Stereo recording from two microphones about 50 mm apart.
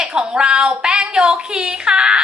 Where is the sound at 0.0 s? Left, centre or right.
Centre.